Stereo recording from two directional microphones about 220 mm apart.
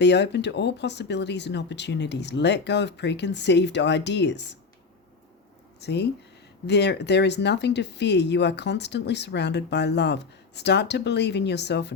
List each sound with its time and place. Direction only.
0.0 s speech: 50° left (ahead or behind)
5.8 s speech: 50° left (ahead or behind)